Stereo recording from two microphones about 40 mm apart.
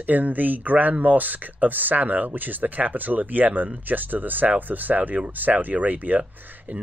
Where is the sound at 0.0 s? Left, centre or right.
Right.